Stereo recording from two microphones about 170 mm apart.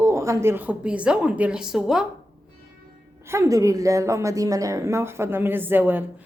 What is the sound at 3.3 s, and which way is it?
A woman's voice, 15° right (ahead or behind).